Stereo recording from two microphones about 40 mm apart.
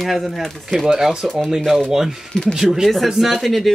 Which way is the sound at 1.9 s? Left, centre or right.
Centre.